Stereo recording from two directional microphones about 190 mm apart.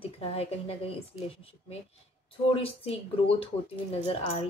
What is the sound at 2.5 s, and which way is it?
Speech, 30° left (ahead or behind).